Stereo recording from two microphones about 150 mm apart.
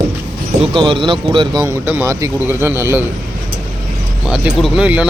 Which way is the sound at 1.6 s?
15° right (ahead or behind).